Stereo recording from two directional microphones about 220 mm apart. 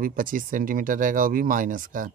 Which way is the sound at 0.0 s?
40° right (ahead or behind).